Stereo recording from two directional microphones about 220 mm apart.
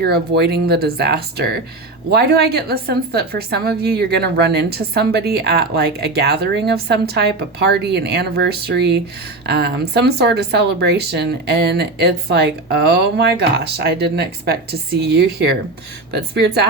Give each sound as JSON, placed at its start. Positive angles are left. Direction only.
{"t": 0.0, "sound": "a woman's voice", "side_deg": -45}